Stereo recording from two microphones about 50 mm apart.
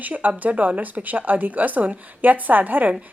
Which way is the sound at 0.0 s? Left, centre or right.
Right.